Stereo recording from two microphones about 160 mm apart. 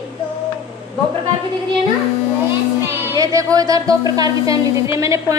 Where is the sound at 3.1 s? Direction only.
20° right (ahead or behind).